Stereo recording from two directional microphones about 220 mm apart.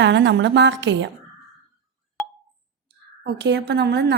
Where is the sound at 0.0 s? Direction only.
55° right (ahead or behind).